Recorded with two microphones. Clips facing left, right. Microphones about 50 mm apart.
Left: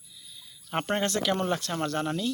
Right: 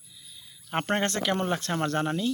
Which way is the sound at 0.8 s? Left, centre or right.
Right.